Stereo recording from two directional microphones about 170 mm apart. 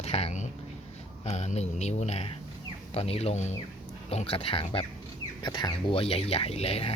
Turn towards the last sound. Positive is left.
turn(degrees=35)  # may be behind; listen again after turning